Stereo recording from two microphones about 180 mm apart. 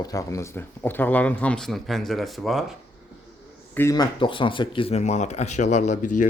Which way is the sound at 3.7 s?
20° left (ahead or behind).